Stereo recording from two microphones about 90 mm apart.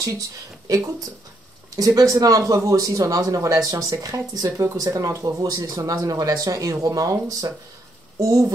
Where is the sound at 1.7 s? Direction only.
40° right (ahead or behind).